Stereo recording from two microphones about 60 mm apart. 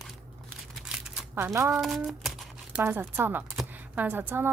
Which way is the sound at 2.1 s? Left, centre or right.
Centre.